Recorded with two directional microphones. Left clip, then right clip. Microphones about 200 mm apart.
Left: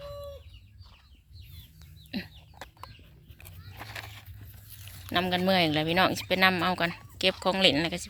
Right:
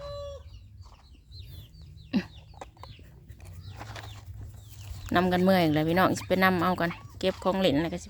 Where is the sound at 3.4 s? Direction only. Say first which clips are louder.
Left 1 dB; 5° left (ahead or behind).